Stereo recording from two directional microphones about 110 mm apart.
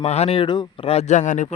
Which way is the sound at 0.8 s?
75° left (ahead or behind).